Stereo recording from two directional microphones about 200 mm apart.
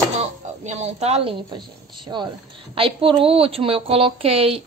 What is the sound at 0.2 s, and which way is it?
A woman's voice, 35° right (ahead or behind).